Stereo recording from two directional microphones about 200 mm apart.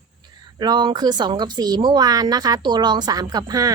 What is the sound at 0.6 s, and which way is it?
Speech, 20° right (ahead or behind).